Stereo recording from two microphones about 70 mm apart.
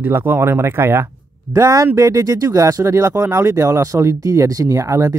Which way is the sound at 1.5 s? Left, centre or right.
Right.